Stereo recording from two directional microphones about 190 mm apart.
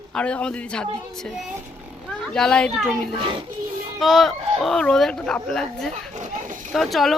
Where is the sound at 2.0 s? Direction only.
5° left (ahead or behind).